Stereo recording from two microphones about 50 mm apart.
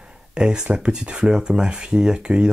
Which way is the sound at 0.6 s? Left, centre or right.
Right.